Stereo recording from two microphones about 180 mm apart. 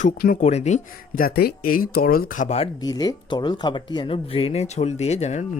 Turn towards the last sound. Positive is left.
turn(degrees=40)  # may be behind; listen again after turning